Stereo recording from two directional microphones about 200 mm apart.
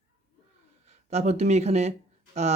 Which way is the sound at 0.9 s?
35° right (ahead or behind).